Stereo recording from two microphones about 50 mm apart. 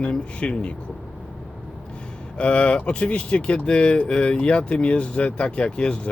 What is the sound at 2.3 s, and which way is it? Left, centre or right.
Speech, left.